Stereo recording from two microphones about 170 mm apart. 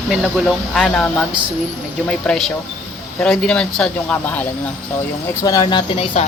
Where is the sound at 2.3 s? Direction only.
Centre (ahead or behind).